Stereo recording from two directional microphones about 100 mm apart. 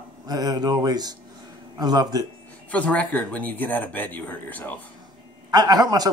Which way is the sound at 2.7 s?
15° left (ahead or behind).